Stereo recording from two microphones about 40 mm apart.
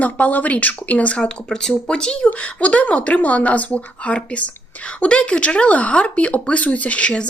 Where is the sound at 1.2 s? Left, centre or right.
Centre.